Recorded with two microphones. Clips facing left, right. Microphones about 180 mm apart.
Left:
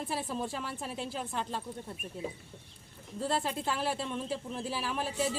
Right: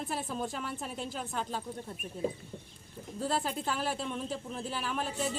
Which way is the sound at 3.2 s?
Centre (ahead or behind).